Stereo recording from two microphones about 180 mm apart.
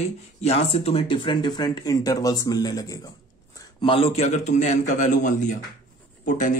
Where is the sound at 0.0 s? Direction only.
35° left (ahead or behind).